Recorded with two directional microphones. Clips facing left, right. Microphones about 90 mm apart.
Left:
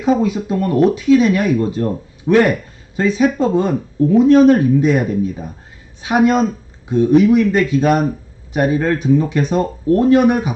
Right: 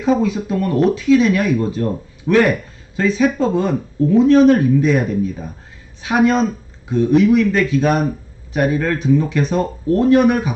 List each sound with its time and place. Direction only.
0.0 s speech: 20° left (ahead or behind)